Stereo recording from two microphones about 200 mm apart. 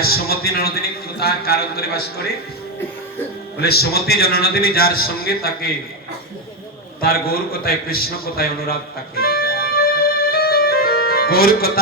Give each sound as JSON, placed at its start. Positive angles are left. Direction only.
{"t": 0.0, "sound": "a man's voice", "side_deg": 50}
{"t": 3.6, "sound": "a man's voice", "side_deg": 50}
{"t": 7.0, "sound": "a man's voice", "side_deg": 50}
{"t": 9.1, "sound": "music", "side_deg": 50}